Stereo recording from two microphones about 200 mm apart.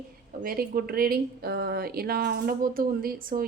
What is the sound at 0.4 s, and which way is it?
Speech, 50° right (ahead or behind).